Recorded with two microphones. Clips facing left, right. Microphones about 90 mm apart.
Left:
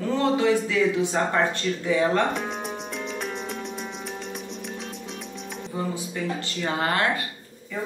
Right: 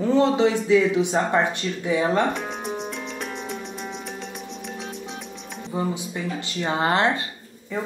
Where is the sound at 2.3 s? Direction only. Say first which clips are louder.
Right 1 dB; centre (ahead or behind).